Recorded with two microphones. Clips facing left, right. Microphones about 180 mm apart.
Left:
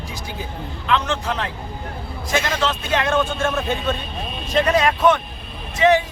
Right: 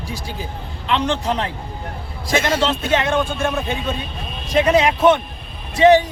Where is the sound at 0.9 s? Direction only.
30° right (ahead or behind).